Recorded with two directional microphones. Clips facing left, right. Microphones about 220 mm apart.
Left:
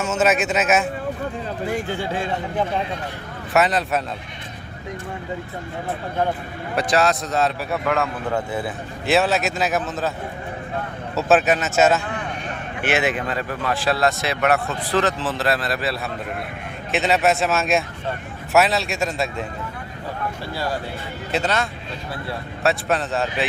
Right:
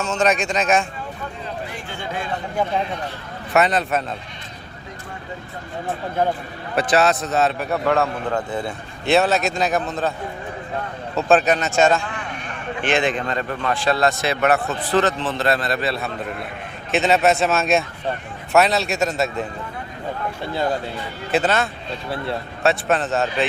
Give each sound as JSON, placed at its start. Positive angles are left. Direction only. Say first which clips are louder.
{"t": 0.0, "sound": "speech", "louder": "left 1 dB", "side_deg": 5}
{"t": 1.6, "sound": "speech", "louder": "left 7 dB", "side_deg": 40}
{"t": 3.5, "sound": "speech", "louder": "right 1 dB", "side_deg": 0}
{"t": 6.7, "sound": "speech", "louder": "right 2 dB", "side_deg": 0}
{"t": 7.9, "sound": "speech", "louder": "right 3 dB", "side_deg": -35}
{"t": 8.3, "sound": "speech", "louder": "even", "side_deg": 5}
{"t": 11.2, "sound": "speech", "louder": "right 1 dB", "side_deg": 5}
{"t": 21.3, "sound": "speech", "louder": "right 3 dB", "side_deg": -5}